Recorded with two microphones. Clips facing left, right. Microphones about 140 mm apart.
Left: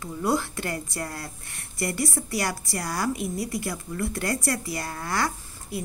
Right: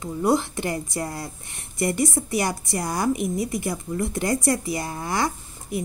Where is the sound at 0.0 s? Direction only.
20° right (ahead or behind).